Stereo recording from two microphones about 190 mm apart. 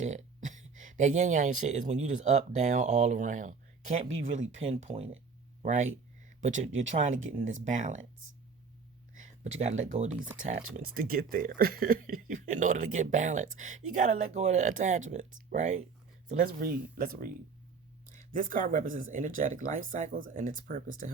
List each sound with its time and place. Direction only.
0.0 s speech: 40° right (ahead or behind)
9.1 s speech: 35° right (ahead or behind)
10.8 s speech: 50° right (ahead or behind)